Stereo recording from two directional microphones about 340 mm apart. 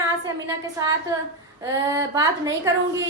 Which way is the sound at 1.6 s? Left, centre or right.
Centre.